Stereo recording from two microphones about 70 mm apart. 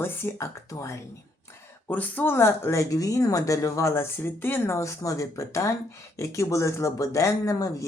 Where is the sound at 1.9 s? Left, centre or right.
Left.